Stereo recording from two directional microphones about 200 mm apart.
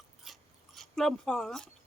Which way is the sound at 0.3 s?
Centre (ahead or behind).